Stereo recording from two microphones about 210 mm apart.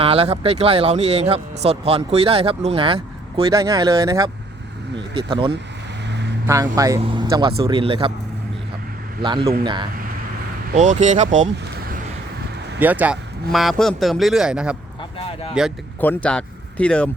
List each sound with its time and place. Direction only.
0.0 s speech: 25° right (ahead or behind)
6.1 s vehicle: 55° right (ahead or behind)
6.5 s speech: 15° right (ahead or behind)
9.2 s speech: 25° right (ahead or behind)
10.8 s speech: 35° right (ahead or behind)
12.8 s speech: 10° right (ahead or behind)
15.2 s speech: 25° left (ahead or behind)
16.0 s speech: 5° left (ahead or behind)